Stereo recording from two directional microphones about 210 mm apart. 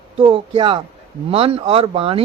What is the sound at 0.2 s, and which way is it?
Speech, 25° right (ahead or behind).